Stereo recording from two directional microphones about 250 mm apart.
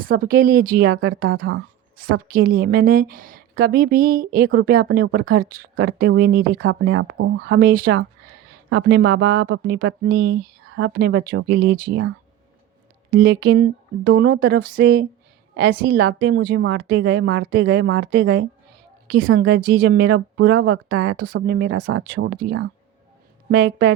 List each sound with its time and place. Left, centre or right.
0.0 s a woman's voice: right
13.1 s speech: right